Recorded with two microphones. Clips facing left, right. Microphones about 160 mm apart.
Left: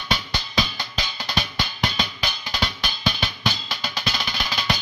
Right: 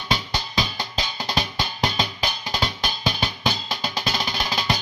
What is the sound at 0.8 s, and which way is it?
Music, 40° right (ahead or behind).